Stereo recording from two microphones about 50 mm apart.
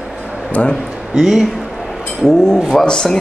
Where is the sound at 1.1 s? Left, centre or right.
Centre.